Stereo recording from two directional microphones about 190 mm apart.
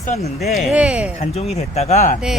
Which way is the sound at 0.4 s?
Centre (ahead or behind).